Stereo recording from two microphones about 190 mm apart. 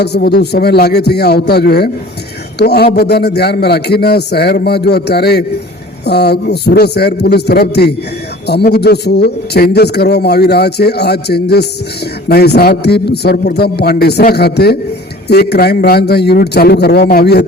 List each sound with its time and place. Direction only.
0.0 s a man's voice: 60° left (ahead or behind)